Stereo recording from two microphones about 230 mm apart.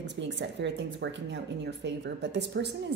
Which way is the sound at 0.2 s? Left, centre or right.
Right.